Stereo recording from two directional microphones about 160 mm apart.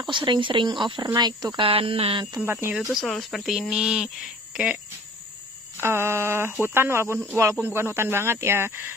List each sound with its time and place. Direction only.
0.0 s speech: 30° right (ahead or behind)
2.3 s speech: 15° right (ahead or behind)
2.9 s speech: centre (ahead or behind)
5.8 s speech: 15° right (ahead or behind)